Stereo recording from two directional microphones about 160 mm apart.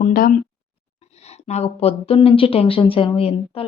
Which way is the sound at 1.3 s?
45° left (ahead or behind).